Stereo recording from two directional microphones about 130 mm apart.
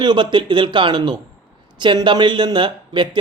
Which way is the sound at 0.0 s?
35° right (ahead or behind).